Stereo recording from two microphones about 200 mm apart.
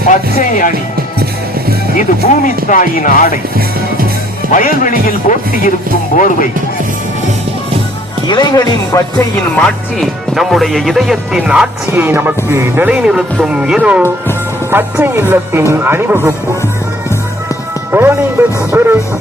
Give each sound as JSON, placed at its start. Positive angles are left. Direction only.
{"t": 0.1, "sound": "speech", "side_deg": 40}
{"t": 2.0, "sound": "speech", "side_deg": 40}
{"t": 3.8, "sound": "music", "side_deg": -45}
{"t": 4.5, "sound": "speech", "side_deg": 40}
{"t": 8.3, "sound": "speech", "side_deg": 20}
{"t": 9.6, "sound": "speech", "side_deg": 0}
{"t": 17.9, "sound": "music", "side_deg": -10}